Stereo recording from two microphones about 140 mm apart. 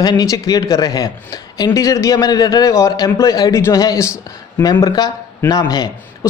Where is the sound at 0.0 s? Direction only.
30° left (ahead or behind).